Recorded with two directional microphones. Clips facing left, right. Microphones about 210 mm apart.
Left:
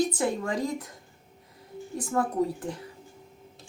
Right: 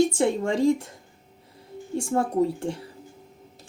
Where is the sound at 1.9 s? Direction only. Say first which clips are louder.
Right 4 dB; 30° right (ahead or behind).